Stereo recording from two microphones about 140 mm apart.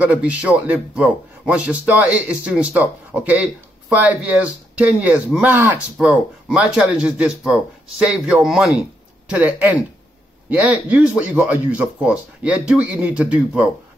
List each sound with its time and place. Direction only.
0.0 s speech: 10° right (ahead or behind)